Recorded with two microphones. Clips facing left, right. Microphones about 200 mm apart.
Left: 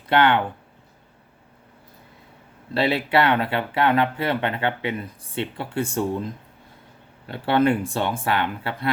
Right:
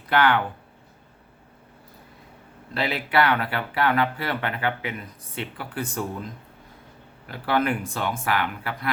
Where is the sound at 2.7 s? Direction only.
30° left (ahead or behind).